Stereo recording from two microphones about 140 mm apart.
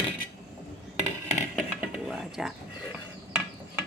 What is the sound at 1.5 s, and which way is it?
Music, 5° right (ahead or behind).